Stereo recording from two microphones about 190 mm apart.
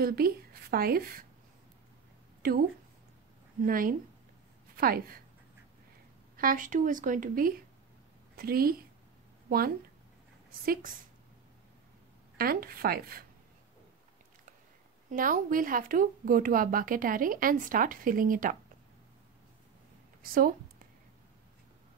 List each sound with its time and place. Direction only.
0.0 s speech: 50° right (ahead or behind)
2.4 s a woman's voice: 55° right (ahead or behind)
3.6 s speech: 50° right (ahead or behind)
6.3 s speech: 45° right (ahead or behind)
10.6 s speech: 50° right (ahead or behind)
12.4 s speech: 50° right (ahead or behind)
15.0 s speech: 45° right (ahead or behind)